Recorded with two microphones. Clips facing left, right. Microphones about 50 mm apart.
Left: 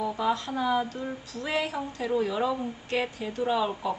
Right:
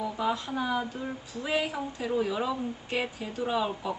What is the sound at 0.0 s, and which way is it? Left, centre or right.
Speech, centre.